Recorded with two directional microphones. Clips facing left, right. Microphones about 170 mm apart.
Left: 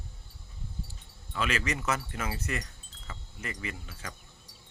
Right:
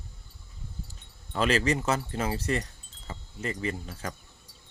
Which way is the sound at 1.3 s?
35° right (ahead or behind).